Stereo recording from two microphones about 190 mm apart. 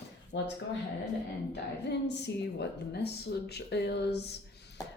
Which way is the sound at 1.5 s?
65° left (ahead or behind).